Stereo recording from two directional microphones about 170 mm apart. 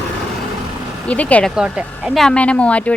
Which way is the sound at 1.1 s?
10° left (ahead or behind).